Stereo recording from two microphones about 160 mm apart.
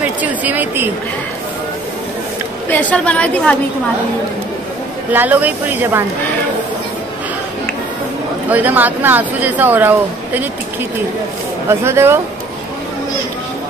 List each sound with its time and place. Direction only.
0.2 s speech: 10° right (ahead or behind)
2.7 s a woman's voice: 10° left (ahead or behind)
5.1 s speech: 10° right (ahead or behind)
8.5 s speech: 10° right (ahead or behind)
11.8 s speech: 15° right (ahead or behind)